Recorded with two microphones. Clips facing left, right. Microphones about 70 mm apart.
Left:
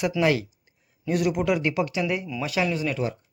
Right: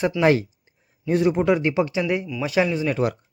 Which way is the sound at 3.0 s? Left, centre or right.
Right.